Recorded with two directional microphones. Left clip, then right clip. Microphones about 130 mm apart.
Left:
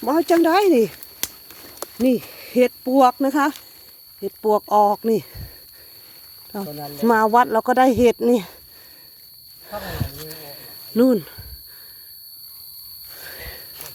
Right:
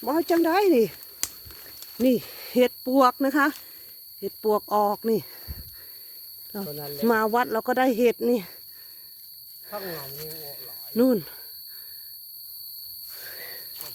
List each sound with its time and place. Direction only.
0.0 s speech: 20° left (ahead or behind)
0.7 s speech: centre (ahead or behind)
2.0 s speech: 25° right (ahead or behind); by 5.2 s centre (ahead or behind)
6.5 s speech: 5° right (ahead or behind)
9.8 s speech: 25° left (ahead or behind)
10.9 s speech: 5° left (ahead or behind)
13.1 s a sound: 10° left (ahead or behind)